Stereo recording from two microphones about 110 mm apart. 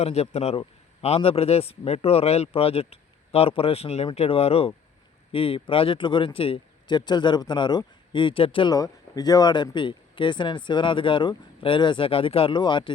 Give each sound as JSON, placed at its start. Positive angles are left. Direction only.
{"t": 0.0, "sound": "a man's voice", "side_deg": 75}
{"t": 5.3, "sound": "speech", "side_deg": 55}
{"t": 8.7, "sound": "speech", "side_deg": 35}